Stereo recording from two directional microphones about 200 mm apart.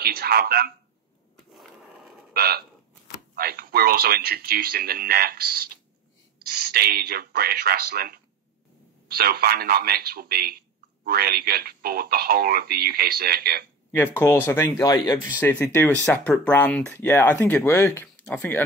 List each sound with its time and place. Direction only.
0.0 s speech: 50° right (ahead or behind)
1.5 s skateboard: centre (ahead or behind)
2.3 s a sound: 50° right (ahead or behind)
3.3 s speech: 45° right (ahead or behind)
14.1 s speech: 10° left (ahead or behind)